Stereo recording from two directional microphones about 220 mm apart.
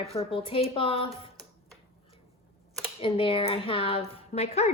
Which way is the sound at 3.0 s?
25° left (ahead or behind).